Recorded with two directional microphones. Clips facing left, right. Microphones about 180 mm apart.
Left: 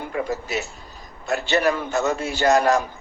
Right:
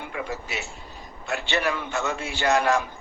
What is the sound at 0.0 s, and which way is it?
A man's voice, 40° left (ahead or behind).